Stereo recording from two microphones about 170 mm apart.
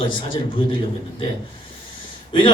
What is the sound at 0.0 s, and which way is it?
Speech, 30° left (ahead or behind).